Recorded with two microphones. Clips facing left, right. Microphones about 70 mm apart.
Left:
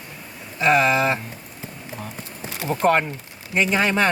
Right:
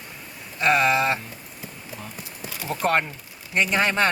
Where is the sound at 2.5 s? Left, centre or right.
Left.